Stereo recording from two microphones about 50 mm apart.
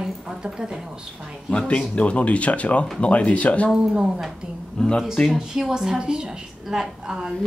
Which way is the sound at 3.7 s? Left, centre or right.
Centre.